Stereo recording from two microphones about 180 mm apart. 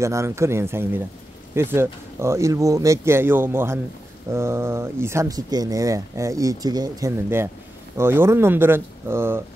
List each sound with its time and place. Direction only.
0.0 s speech: 15° right (ahead or behind)